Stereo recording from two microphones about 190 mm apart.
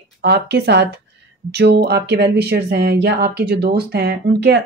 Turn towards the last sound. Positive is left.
turn(degrees=-60)  # may be behind; listen again after turning